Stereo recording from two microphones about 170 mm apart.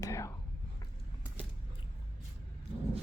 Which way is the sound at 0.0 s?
20° left (ahead or behind).